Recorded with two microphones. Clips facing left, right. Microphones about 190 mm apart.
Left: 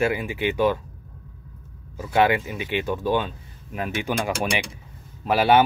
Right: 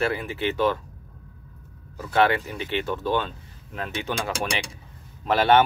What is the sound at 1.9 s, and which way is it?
Speech, 15° left (ahead or behind).